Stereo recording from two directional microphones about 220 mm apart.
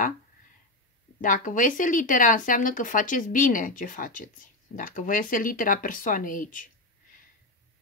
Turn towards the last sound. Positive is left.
turn(degrees=40)  # may be behind; listen again after turning